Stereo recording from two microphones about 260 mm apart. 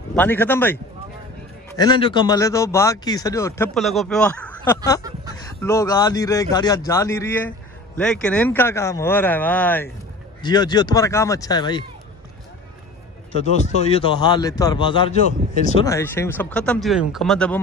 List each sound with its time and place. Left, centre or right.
0.1 s speech: centre
1.8 s speech: centre
13.4 s speech: left; by 17.6 s centre